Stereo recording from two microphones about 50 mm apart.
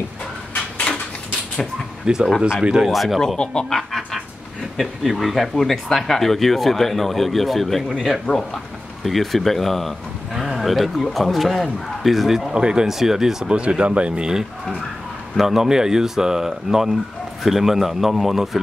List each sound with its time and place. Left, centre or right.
0.9 s a sound: left
2.1 s speech: centre
2.9 s speech: centre
3.3 s speech: centre
8.3 s speech: left
9.0 s speech: centre
12.4 s speech: centre
13.5 s speech: right
15.3 s speech: centre